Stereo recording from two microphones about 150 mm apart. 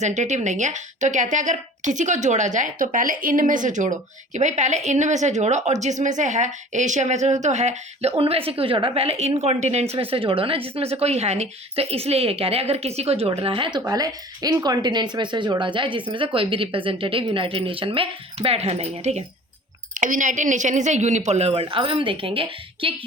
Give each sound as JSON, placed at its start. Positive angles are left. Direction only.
{"t": 0.0, "sound": "a woman's voice", "side_deg": -50}
{"t": 10.0, "sound": "speech", "side_deg": -35}
{"t": 13.7, "sound": "speech", "side_deg": -25}
{"t": 19.9, "sound": "a woman's voice", "side_deg": -60}